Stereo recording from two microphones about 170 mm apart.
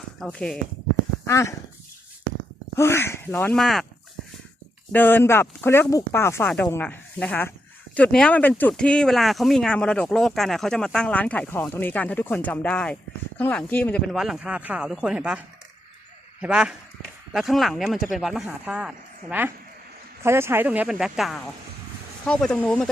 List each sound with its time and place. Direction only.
0.2 s speech: 5° left (ahead or behind)
1.3 s speech: 15° left (ahead or behind)
2.7 s speech: 15° left (ahead or behind)
4.9 s speech: 10° left (ahead or behind); by 15.4 s 5° right (ahead or behind)
16.4 s speech: 5° right (ahead or behind)